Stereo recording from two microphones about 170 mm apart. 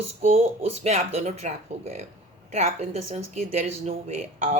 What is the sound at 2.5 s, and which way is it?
Speech, 40° right (ahead or behind).